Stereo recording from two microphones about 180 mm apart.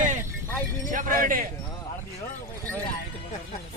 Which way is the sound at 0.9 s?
50° right (ahead or behind).